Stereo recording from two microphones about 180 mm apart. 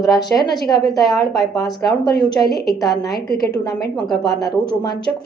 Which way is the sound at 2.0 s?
65° left (ahead or behind).